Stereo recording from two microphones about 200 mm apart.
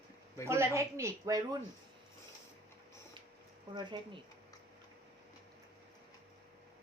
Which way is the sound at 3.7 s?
25° right (ahead or behind).